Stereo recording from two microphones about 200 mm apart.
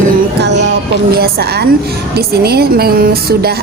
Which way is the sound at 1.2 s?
50° right (ahead or behind).